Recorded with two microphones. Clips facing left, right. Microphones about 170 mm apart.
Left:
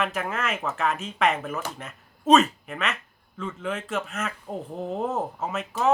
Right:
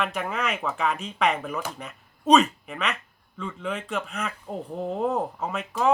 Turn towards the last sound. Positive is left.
turn(degrees=5)  # may be behind; listen again after turning